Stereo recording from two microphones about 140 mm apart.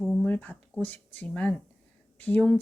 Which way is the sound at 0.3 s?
10° left (ahead or behind).